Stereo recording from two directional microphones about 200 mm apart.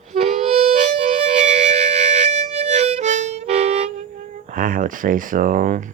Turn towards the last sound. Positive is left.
turn(degrees=-40)  # may be behind; listen again after turning